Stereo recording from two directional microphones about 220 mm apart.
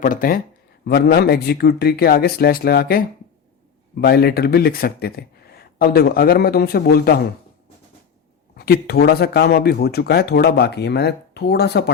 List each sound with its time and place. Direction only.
0.0 s speech: 40° left (ahead or behind)
8.5 s speech: 45° left (ahead or behind)